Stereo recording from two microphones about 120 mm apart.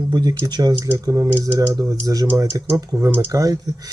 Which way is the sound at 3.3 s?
30° right (ahead or behind).